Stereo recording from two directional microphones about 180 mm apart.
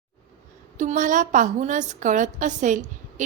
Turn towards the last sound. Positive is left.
turn(degrees=-45)  # may be behind; listen again after turning